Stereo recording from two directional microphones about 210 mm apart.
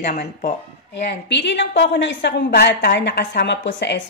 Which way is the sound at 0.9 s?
55° left (ahead or behind).